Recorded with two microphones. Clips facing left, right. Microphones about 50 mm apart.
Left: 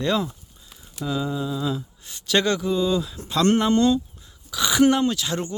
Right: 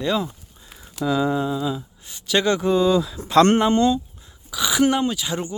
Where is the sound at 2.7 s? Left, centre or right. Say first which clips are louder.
Right 4 dB; right.